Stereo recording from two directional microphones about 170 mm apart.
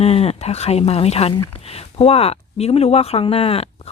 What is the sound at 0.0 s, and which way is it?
Speech, 35° left (ahead or behind).